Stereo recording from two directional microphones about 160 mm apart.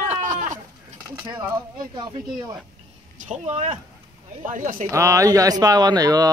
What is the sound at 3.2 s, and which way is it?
A man's voice, 45° right (ahead or behind).